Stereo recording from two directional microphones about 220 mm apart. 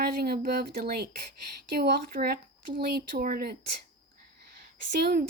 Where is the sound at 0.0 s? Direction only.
45° right (ahead or behind).